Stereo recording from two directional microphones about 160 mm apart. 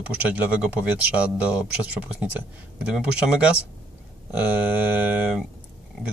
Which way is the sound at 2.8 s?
5° right (ahead or behind).